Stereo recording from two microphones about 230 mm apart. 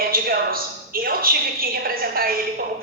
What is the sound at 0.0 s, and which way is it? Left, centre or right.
A woman's voice, right.